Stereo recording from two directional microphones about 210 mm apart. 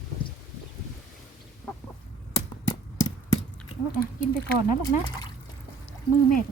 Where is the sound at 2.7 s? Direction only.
15° left (ahead or behind).